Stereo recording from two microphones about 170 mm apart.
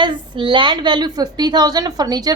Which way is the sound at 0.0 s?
30° right (ahead or behind).